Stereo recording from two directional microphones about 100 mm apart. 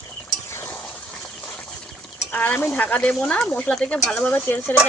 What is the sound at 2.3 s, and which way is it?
Speech, 15° left (ahead or behind).